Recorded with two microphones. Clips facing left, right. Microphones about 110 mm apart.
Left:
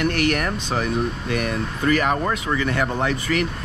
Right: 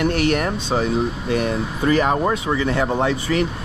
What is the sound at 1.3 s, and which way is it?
Speech, 30° right (ahead or behind).